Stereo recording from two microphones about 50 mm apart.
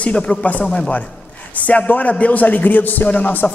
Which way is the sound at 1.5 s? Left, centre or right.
Left.